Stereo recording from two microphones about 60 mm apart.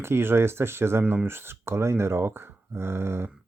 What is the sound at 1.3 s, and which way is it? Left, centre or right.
Speech, right.